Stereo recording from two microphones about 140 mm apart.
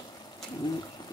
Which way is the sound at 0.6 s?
30° left (ahead or behind).